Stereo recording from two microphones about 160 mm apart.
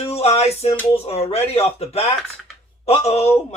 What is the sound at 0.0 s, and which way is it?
Music, 40° left (ahead or behind).